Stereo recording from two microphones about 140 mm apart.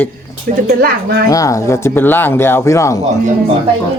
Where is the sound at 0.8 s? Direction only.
90° right.